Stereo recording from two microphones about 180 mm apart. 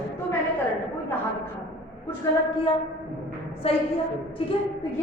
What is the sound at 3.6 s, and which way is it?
Speech, 30° left (ahead or behind).